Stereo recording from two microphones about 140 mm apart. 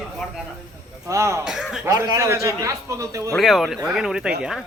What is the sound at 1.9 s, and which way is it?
A man's voice, 25° right (ahead or behind).